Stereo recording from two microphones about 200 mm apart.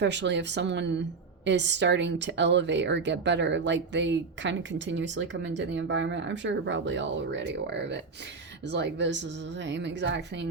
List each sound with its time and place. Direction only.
0.0 s speech: 60° right (ahead or behind)